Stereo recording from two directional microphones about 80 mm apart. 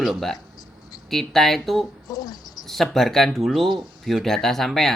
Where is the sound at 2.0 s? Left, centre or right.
Left.